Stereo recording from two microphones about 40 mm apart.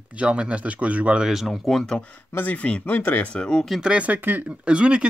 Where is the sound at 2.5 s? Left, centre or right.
Left.